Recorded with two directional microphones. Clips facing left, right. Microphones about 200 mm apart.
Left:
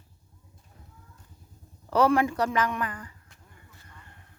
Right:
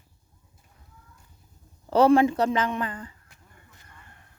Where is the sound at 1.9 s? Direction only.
25° right (ahead or behind).